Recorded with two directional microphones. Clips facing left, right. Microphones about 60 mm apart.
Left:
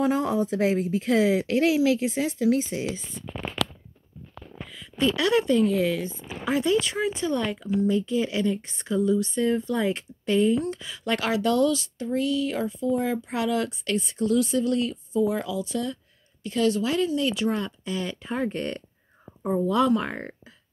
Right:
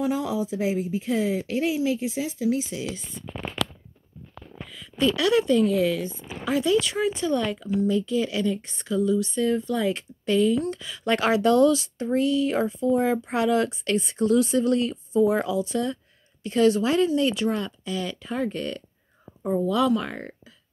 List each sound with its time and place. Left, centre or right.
0.0 s speech: left
2.0 s speech: left
4.6 s speech: centre
5.6 s speech: centre
6.0 s speech: left
11.1 s speech: centre
17.4 s speech: centre
17.8 s speech: left
19.6 s speech: left